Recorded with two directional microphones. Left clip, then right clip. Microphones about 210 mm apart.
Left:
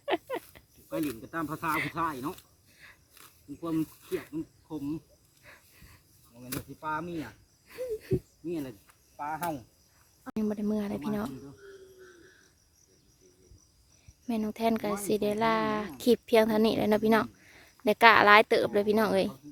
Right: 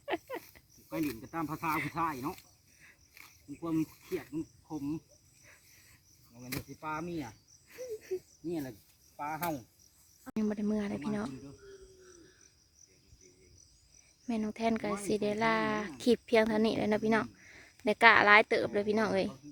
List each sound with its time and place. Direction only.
0.0 s dog: 20° left (ahead or behind)
0.9 s speech: centre (ahead or behind)
1.7 s a woman's voice: 15° left (ahead or behind)
2.0 s speech: centre (ahead or behind)
2.8 s a sound: 20° left (ahead or behind)
3.2 s snake: 5° left (ahead or behind)
4.1 s a woman's voice: 15° left (ahead or behind)
5.5 s a sound: 20° left (ahead or behind)
6.4 s speech: centre (ahead or behind)
7.7 s hoot: 20° left (ahead or behind)
8.4 s speech: 5° right (ahead or behind)
14.3 s a woman's voice: 10° left (ahead or behind)